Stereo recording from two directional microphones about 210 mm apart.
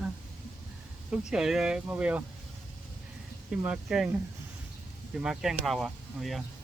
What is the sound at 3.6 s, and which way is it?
Speech, 5° right (ahead or behind).